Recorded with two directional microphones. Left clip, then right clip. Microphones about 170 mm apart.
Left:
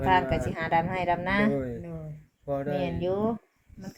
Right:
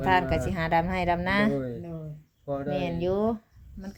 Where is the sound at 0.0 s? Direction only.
10° right (ahead or behind).